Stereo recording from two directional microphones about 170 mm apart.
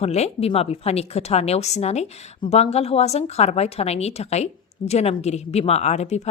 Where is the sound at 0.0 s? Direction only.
40° left (ahead or behind).